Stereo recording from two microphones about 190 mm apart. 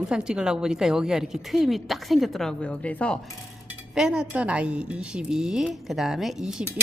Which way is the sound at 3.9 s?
5° right (ahead or behind).